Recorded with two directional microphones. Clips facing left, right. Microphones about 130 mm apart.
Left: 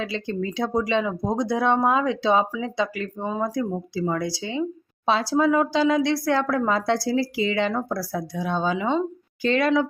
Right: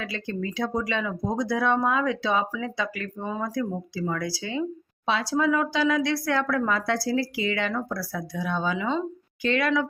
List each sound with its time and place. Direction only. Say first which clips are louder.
0.0 s speech: left 4 dB; 25° left (ahead or behind)
9.4 s speech: left 3 dB; 35° left (ahead or behind)